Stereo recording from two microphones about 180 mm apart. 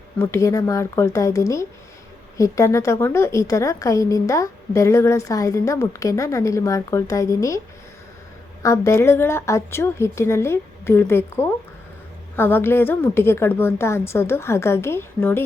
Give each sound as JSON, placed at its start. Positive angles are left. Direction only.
{"t": 0.2, "sound": "a woman's voice", "side_deg": 15}
{"t": 8.6, "sound": "a woman's voice", "side_deg": 15}